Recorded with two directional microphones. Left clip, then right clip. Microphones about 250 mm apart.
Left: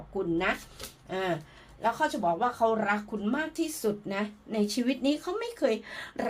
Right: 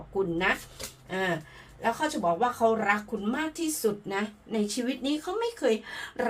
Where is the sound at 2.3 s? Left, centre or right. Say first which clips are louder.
Right 1 dB; left.